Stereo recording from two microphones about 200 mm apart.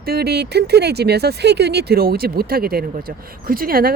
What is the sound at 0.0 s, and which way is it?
Speech, 50° right (ahead or behind).